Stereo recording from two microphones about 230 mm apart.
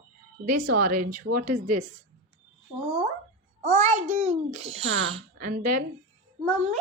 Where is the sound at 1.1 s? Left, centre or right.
Right.